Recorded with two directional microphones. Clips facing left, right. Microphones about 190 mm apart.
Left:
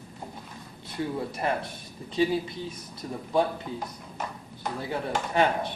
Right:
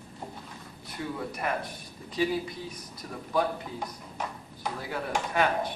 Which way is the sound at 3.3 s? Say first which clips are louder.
Left 3 dB; 25° left (ahead or behind).